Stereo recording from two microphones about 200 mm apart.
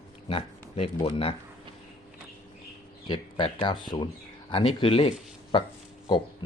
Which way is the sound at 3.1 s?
25° left (ahead or behind).